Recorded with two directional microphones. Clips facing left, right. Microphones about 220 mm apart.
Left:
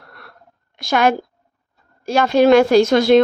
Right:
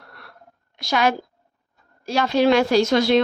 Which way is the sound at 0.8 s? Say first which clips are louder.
Left 4 dB; 50° left (ahead or behind).